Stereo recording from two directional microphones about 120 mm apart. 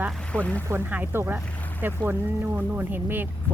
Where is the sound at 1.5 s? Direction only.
15° left (ahead or behind).